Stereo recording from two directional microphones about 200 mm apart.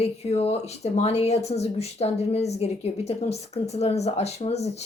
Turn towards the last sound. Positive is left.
turn(degrees=30)  # may be behind; listen again after turning